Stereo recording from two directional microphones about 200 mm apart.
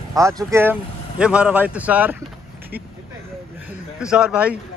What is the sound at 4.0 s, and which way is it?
Speech, 5° right (ahead or behind).